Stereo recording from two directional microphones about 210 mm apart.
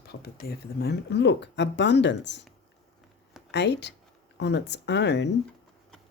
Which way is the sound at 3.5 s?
55° left (ahead or behind).